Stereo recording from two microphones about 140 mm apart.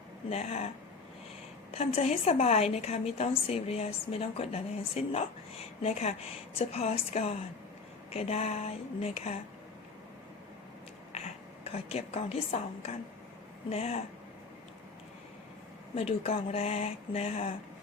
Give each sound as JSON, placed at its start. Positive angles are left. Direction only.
{"t": 0.3, "sound": "a woman's voice", "side_deg": 50}
{"t": 1.7, "sound": "a woman's voice", "side_deg": 50}
{"t": 11.6, "sound": "a woman's voice", "side_deg": 50}
{"t": 16.0, "sound": "a woman's voice", "side_deg": 45}